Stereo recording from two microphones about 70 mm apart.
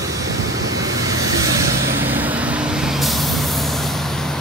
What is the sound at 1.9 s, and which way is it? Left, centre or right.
Vehicle, right.